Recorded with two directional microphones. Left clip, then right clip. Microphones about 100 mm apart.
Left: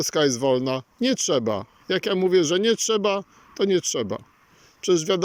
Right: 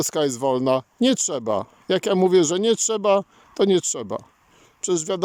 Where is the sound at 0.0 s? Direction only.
40° right (ahead or behind).